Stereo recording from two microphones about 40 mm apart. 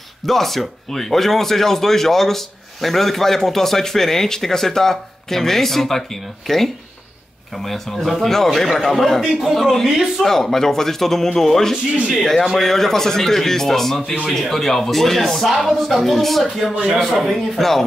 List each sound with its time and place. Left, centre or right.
0.3 s speech: centre
10.2 s speech: centre
16.4 s speech: centre
16.7 s speech: right
17.0 s speech: centre